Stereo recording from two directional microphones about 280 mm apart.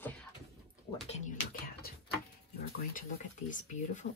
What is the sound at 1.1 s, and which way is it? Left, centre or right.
Speech, left.